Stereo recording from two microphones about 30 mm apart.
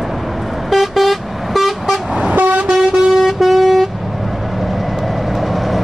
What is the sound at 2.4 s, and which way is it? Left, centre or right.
Vehicle, right.